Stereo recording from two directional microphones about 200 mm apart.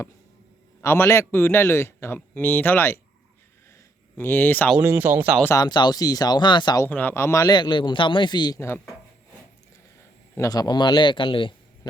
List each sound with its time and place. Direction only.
0.8 s a man's voice: 15° left (ahead or behind)
4.2 s a man's voice: 10° left (ahead or behind)
4.8 s speech: 10° right (ahead or behind)
5.4 s speech: 15° left (ahead or behind)
6.8 s speech: 10° left (ahead or behind)
10.3 s a man's voice: 15° left (ahead or behind)